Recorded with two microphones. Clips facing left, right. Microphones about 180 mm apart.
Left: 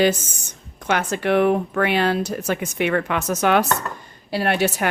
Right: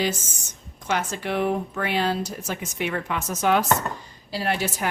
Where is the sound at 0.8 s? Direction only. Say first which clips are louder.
Left 5 dB; 65° left (ahead or behind).